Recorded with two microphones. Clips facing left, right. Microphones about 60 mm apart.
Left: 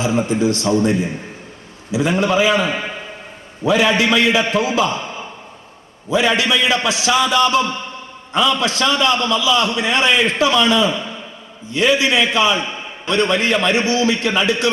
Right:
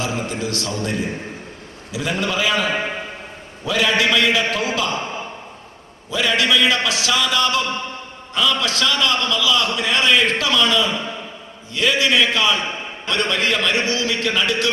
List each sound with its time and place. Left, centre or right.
0.0 s a man's voice: left
6.1 s a man's voice: left